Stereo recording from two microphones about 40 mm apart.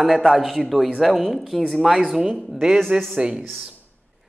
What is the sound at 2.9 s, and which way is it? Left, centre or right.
Speech, right.